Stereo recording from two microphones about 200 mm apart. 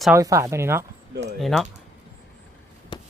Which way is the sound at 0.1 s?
15° right (ahead or behind).